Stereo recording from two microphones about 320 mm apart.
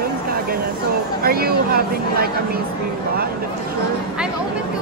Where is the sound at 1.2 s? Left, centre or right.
Right.